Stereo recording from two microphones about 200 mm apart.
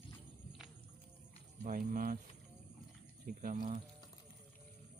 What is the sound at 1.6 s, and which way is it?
Speech, 45° right (ahead or behind).